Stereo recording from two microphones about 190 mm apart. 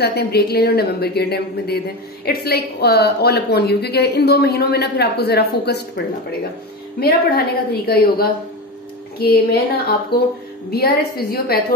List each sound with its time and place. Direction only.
0.0 s a woman's voice: 60° left (ahead or behind)
7.0 s a woman's voice: 55° left (ahead or behind)